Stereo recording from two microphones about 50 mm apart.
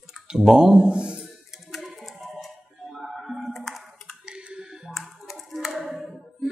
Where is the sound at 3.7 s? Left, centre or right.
Centre.